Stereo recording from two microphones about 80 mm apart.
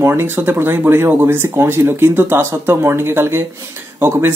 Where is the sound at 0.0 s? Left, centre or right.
Right.